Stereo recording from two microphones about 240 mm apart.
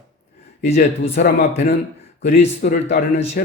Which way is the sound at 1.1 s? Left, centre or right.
Left.